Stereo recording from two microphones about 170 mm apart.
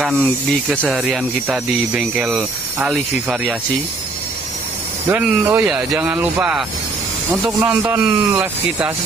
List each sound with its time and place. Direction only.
0.2 s speech: centre (ahead or behind)
5.1 s speech: 10° right (ahead or behind)
7.7 s speech: 20° right (ahead or behind)